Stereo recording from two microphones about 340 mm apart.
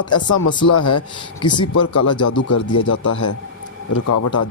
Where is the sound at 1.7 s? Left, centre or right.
Left.